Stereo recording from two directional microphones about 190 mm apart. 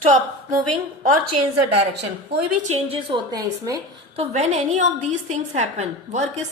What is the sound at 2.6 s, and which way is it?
Speech, 30° right (ahead or behind).